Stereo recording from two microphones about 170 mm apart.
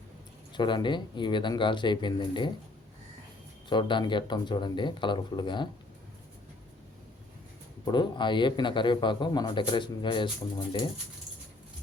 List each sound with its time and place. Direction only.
0.5 s speech: 25° left (ahead or behind)
3.7 s speech: 30° left (ahead or behind)
7.9 s speech: 25° left (ahead or behind)